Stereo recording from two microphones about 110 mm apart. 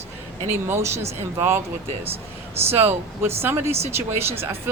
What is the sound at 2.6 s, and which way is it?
A woman's voice, 20° right (ahead or behind).